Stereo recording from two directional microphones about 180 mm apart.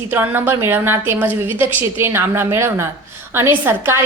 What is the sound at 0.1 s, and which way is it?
A woman's voice, 10° right (ahead or behind).